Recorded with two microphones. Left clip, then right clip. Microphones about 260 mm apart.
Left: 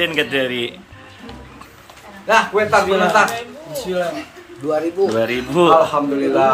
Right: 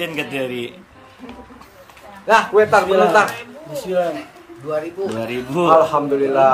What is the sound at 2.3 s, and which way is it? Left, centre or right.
Speech, right.